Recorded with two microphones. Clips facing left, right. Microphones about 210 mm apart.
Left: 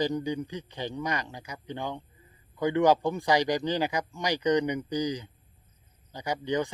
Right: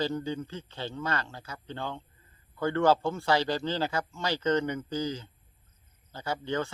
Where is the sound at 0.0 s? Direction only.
15° left (ahead or behind).